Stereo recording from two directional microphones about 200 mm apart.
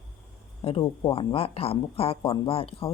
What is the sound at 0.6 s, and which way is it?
Speech, 25° left (ahead or behind).